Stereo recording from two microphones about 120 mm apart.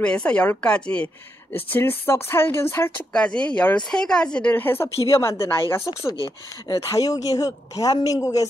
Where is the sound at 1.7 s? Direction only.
20° left (ahead or behind).